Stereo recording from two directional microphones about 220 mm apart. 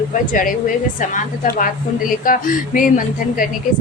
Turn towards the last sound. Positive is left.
turn(degrees=40)  # may be behind; listen again after turning